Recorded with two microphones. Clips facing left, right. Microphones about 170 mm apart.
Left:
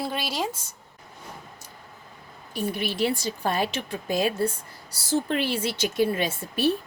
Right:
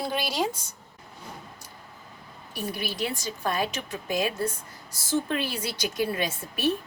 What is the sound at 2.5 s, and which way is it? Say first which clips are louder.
A woman's voice: left 4 dB; 25° left (ahead or behind).